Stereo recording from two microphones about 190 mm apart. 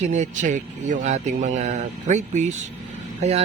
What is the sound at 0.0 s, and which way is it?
A man's voice, 40° right (ahead or behind).